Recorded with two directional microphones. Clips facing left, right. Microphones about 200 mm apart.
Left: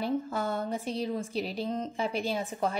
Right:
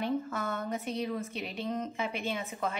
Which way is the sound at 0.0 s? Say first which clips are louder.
Left 2 dB; 30° left (ahead or behind).